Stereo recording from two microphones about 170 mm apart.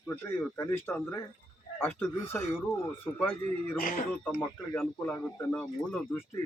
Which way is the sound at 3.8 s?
55° left (ahead or behind).